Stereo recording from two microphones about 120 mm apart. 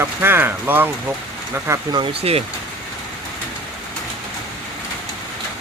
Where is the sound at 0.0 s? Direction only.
20° right (ahead or behind).